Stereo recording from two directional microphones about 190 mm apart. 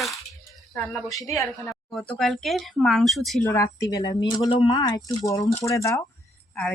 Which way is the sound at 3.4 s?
15° left (ahead or behind).